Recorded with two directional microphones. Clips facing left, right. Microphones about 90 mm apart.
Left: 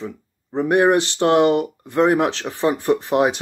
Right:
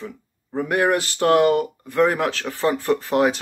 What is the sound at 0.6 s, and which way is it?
Speech, 25° left (ahead or behind).